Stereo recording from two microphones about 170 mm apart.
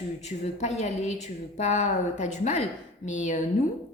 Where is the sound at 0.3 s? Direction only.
40° left (ahead or behind).